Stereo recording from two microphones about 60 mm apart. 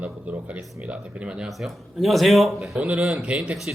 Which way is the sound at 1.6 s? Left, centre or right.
Centre.